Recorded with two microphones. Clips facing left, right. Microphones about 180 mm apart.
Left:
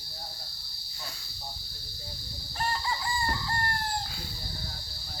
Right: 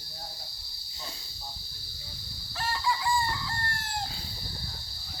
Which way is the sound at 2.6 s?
85° right.